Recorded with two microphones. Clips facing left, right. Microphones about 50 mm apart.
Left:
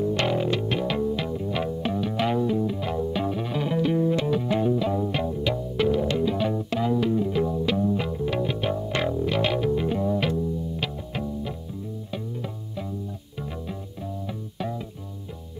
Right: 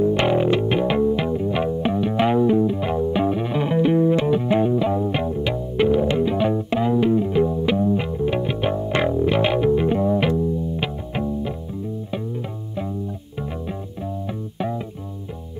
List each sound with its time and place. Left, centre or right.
0.0 s music: right